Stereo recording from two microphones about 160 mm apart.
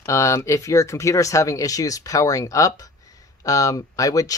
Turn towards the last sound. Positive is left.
turn(degrees=20)  # may be behind; listen again after turning